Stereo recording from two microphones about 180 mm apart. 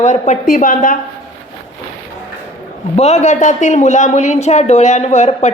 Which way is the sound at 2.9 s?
40° left (ahead or behind).